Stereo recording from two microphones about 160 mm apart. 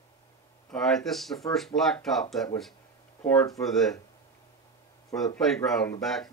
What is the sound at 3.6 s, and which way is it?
Speech, centre (ahead or behind).